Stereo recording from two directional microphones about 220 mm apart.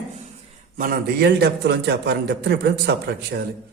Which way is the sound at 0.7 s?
40° right (ahead or behind).